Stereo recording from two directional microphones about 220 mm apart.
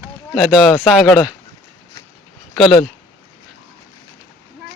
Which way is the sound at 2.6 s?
Centre (ahead or behind).